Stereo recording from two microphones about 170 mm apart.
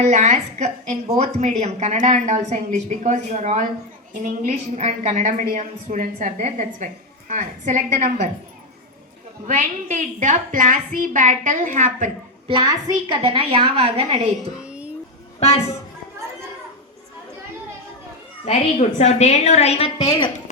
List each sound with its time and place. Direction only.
0.0 s a woman's voice: 45° right (ahead or behind)
9.5 s a woman's voice: 45° right (ahead or behind)
12.5 s a woman's voice: 25° right (ahead or behind)
14.6 s a sound: 5° right (ahead or behind)
15.4 s speech: 40° left (ahead or behind)
18.4 s a woman's voice: 40° left (ahead or behind)
20.1 s a woman's voice: 25° left (ahead or behind)